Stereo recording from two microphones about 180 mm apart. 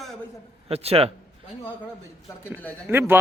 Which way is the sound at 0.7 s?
35° right (ahead or behind).